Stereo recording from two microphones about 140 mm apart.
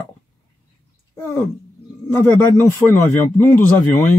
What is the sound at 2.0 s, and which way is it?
Speech, 20° left (ahead or behind).